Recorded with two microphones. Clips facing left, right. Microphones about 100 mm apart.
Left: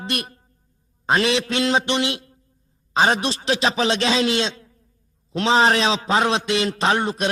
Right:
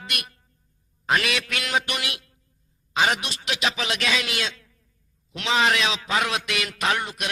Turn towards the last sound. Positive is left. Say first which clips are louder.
# left 6 dB
turn(degrees=30)  # may be behind; listen again after turning